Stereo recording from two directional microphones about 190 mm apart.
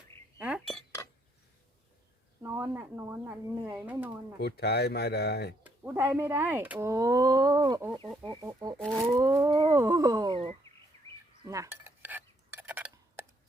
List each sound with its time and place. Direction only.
0.3 s chink: 5° right (ahead or behind)
2.4 s speech: 15° right (ahead or behind)
4.4 s speech: 60° left (ahead or behind)
5.6 s speech: 10° right (ahead or behind)
9.5 s speech: 25° right (ahead or behind)
9.7 s speech: 15° right (ahead or behind)
11.4 s cutlery: 15° right (ahead or behind)